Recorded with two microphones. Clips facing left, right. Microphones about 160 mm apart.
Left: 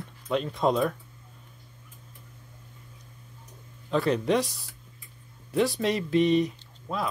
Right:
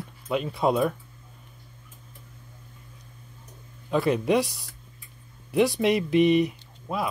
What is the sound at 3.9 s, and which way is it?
Speech, 5° right (ahead or behind).